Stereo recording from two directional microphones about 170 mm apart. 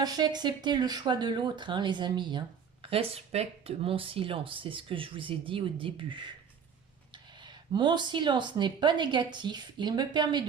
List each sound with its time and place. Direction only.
0.0 s speech: 25° right (ahead or behind)